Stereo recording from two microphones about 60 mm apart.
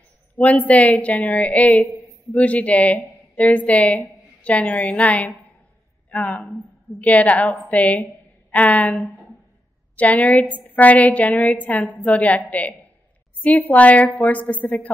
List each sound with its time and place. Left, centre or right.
0.4 s a woman's voice: left